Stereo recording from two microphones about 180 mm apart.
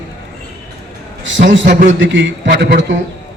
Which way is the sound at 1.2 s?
90° right.